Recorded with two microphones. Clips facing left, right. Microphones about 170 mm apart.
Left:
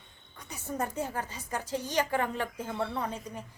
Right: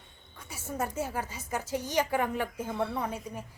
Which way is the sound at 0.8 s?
5° right (ahead or behind).